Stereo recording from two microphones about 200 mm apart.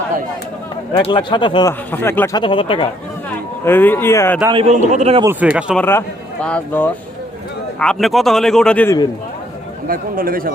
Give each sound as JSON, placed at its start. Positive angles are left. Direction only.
{"t": 0.9, "sound": "speech", "side_deg": 25}
{"t": 1.9, "sound": "a man's voice", "side_deg": 10}
{"t": 2.4, "sound": "speech", "side_deg": 25}
{"t": 3.6, "sound": "a man's voice", "side_deg": 10}
{"t": 4.7, "sound": "a man's voice", "side_deg": -35}
{"t": 5.2, "sound": "a man's voice", "side_deg": -10}
{"t": 5.8, "sound": "a man's voice", "side_deg": 10}
{"t": 9.8, "sound": "a man's voice", "side_deg": -45}